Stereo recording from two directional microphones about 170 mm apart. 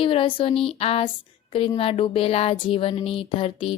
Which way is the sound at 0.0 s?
30° left (ahead or behind).